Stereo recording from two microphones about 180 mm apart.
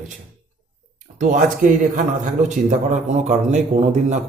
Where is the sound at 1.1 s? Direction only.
45° right (ahead or behind).